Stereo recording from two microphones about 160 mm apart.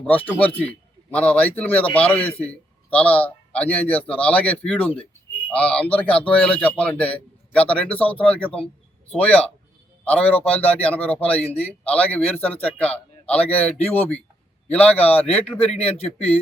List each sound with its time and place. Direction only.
0.0 s a man's voice: 10° left (ahead or behind)
15.7 s speech: 40° left (ahead or behind)